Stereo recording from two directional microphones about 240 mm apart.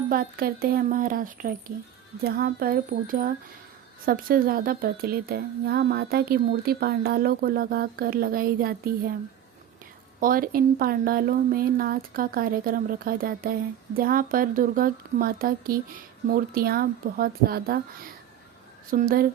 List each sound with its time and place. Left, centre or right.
0.1 s speech: right
10.2 s speech: right
18.9 s speech: right